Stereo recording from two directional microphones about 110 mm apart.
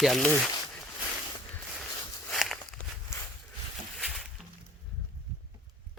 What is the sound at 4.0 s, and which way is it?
Music, centre (ahead or behind).